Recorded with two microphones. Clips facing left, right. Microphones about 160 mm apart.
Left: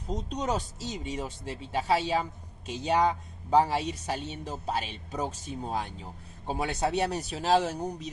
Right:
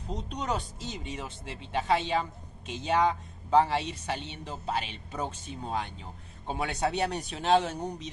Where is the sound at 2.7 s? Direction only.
40° left (ahead or behind).